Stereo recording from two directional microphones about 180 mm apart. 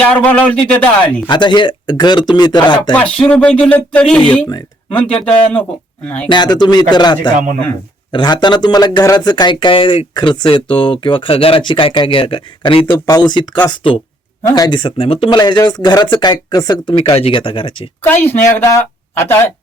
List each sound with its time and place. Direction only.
0.0 s speech: 10° left (ahead or behind)
1.3 s speech: 25° left (ahead or behind)
2.9 s speech: 5° left (ahead or behind)
6.2 s speech: 25° left (ahead or behind)
18.0 s speech: 10° left (ahead or behind)